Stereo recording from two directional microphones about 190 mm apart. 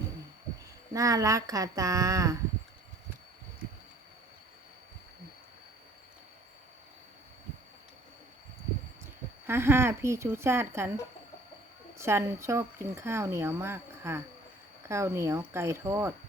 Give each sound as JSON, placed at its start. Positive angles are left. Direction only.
{"t": 0.9, "sound": "speech", "side_deg": -15}
{"t": 9.5, "sound": "speech", "side_deg": -10}
{"t": 11.9, "sound": "speech", "side_deg": -15}